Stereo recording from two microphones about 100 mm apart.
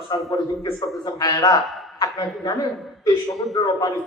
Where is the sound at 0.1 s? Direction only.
45° left (ahead or behind).